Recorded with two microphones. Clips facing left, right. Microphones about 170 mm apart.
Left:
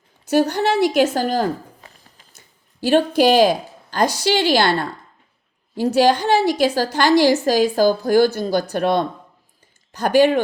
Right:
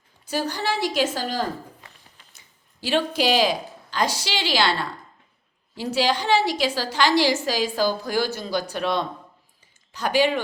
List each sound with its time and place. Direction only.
0.3 s a woman's voice: 65° left (ahead or behind)
2.8 s a woman's voice: 50° left (ahead or behind)